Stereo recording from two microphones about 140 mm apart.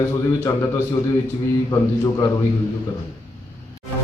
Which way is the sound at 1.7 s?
25° left (ahead or behind).